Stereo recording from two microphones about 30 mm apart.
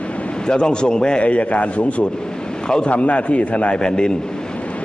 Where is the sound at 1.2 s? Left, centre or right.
Left.